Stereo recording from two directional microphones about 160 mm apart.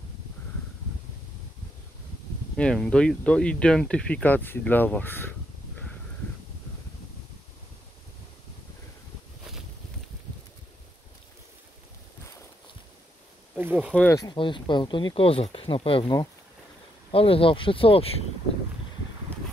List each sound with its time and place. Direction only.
2.5 s speech: 5° left (ahead or behind)
13.6 s speech: 10° right (ahead or behind)
14.1 s speech: 25° left (ahead or behind)